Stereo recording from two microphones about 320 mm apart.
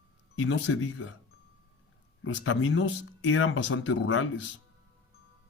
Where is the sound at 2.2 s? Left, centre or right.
Left.